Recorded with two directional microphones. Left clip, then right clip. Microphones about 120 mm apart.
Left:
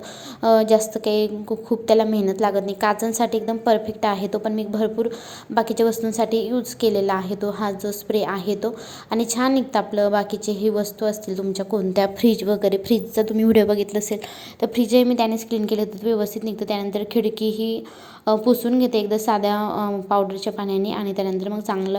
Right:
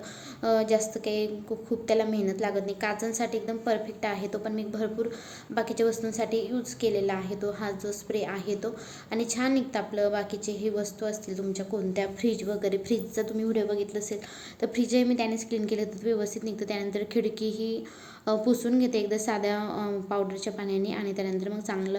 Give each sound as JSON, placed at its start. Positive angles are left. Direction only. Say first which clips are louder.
{"t": 0.4, "sound": "a woman's voice", "louder": "left 9 dB", "side_deg": 35}
{"t": 13.3, "sound": "a woman's voice", "louder": "left 12 dB", "side_deg": 75}
{"t": 14.6, "sound": "a woman's voice", "louder": "left 9 dB", "side_deg": 25}